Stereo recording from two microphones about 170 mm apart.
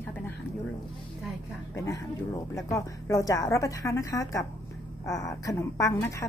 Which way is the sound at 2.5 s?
20° left (ahead or behind).